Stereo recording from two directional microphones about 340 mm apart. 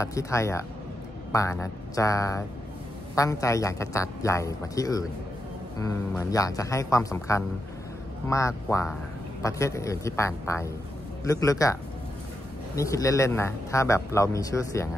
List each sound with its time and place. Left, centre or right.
0.0 s a man's voice: centre